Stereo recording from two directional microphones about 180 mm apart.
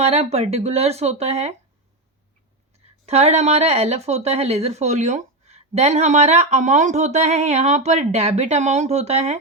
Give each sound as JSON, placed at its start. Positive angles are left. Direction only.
{"t": 0.0, "sound": "speech", "side_deg": -35}
{"t": 3.1, "sound": "speech", "side_deg": -35}